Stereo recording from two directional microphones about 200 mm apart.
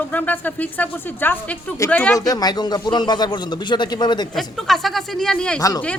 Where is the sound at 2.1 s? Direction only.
20° left (ahead or behind).